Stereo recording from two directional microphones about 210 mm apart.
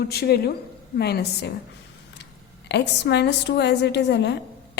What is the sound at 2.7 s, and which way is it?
A woman's voice, 55° left (ahead or behind).